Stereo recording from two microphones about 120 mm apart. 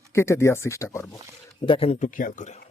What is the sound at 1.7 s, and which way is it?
Speech, 50° left (ahead or behind).